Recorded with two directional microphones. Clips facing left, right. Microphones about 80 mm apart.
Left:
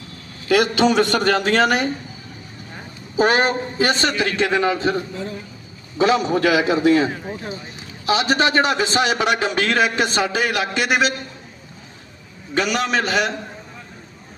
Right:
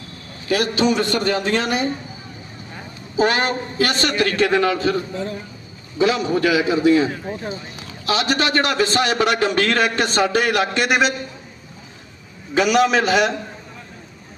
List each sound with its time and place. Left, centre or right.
0.4 s a man's voice: left
3.2 s a man's voice: left
6.0 s a man's voice: left
6.4 s a man's voice: left
7.3 s a man's voice: centre
8.0 s a man's voice: left; by 11.1 s centre
12.5 s a man's voice: centre